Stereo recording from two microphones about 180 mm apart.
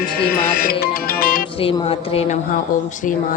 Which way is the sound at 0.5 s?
60° left (ahead or behind).